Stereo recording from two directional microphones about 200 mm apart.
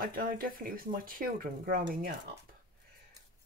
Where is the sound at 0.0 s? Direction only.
45° right (ahead or behind).